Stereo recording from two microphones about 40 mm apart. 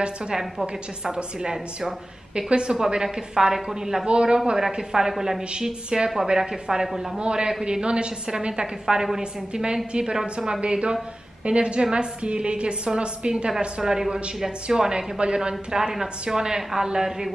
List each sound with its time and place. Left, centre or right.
0.3 s a woman's voice: centre
5.5 s a woman's voice: right
6.5 s a woman's voice: centre
7.2 s a woman's voice: right
8.8 s a woman's voice: centre